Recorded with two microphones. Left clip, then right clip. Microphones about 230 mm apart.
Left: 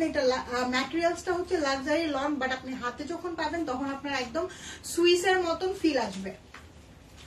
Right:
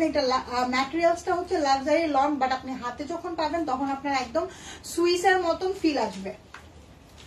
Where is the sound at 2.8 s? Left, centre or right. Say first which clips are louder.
Right 2 dB; centre.